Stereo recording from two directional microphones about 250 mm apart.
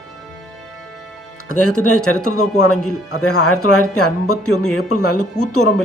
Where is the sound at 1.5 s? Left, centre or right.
Left.